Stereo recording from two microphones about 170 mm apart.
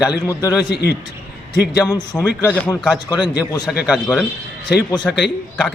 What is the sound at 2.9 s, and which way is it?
Speech, 25° left (ahead or behind).